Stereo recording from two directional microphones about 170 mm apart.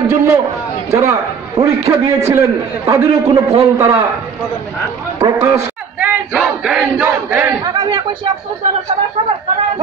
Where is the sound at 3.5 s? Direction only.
35° right (ahead or behind).